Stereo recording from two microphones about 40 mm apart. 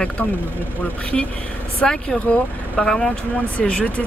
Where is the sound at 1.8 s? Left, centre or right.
Centre.